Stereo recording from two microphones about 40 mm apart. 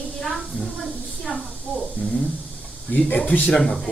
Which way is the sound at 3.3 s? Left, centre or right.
Left.